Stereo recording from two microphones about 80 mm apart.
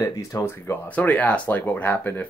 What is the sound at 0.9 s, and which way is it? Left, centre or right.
Speech, centre.